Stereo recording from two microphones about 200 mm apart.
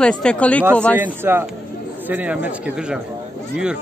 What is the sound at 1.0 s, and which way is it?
Speech, 10° right (ahead or behind).